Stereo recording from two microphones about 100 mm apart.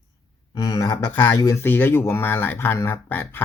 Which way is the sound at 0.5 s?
40° left (ahead or behind).